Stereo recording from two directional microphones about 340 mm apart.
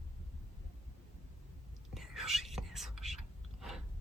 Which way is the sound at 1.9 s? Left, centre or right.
Centre.